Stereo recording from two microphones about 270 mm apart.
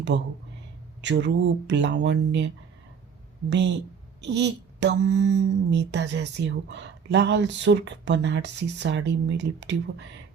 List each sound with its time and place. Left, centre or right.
0.1 s speech: right
3.5 s speech: right